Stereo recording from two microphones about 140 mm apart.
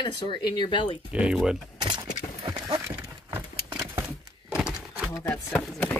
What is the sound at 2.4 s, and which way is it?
Horse, 30° right (ahead or behind).